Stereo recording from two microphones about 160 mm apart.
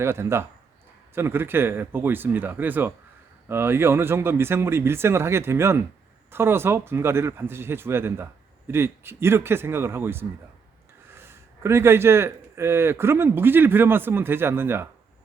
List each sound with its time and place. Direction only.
0.0 s speech: 15° right (ahead or behind)